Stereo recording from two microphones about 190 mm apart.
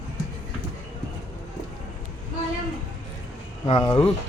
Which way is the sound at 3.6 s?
25° left (ahead or behind).